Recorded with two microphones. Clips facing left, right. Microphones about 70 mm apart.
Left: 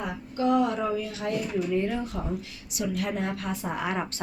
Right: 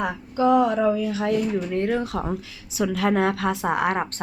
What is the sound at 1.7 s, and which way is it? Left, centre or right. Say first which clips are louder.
A woman's voice: right 4 dB; right.